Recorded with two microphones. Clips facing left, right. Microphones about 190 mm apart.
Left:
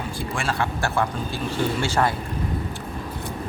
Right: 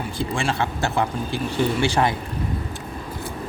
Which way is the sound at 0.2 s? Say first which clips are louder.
Right 3 dB; 25° right (ahead or behind).